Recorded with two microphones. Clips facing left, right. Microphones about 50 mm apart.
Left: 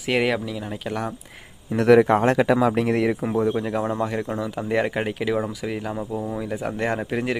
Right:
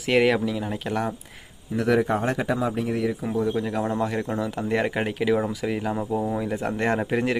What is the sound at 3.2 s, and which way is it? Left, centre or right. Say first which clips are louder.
Speech: left 3 dB; left.